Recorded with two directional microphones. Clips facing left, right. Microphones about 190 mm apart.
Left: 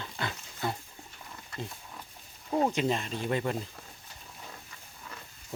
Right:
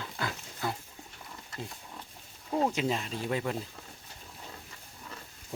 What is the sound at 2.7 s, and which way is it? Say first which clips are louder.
Speech: left 2 dB; 5° right (ahead or behind).